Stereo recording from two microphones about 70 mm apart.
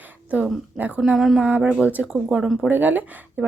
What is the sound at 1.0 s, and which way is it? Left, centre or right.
Speech, centre.